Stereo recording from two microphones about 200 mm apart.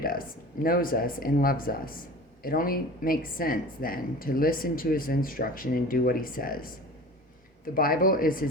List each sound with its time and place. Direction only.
0.0 s a woman's voice: 45° left (ahead or behind)
7.7 s a woman's voice: 45° left (ahead or behind)